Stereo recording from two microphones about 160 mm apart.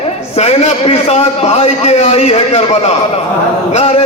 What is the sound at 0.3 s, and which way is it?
A man's voice, 45° left (ahead or behind).